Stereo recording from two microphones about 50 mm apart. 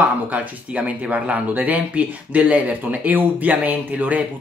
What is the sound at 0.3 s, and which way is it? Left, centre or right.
Speech, right.